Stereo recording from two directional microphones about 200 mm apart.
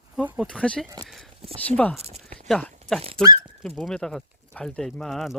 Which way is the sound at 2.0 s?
35° right (ahead or behind).